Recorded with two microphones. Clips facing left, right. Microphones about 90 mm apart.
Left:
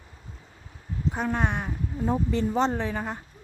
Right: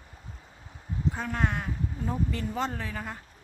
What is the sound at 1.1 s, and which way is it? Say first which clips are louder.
Speech: left 7 dB; 20° left (ahead or behind).